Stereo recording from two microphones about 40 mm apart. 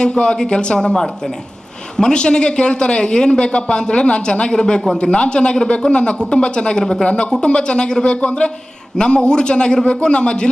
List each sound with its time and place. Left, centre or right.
0.0 s a man's voice: left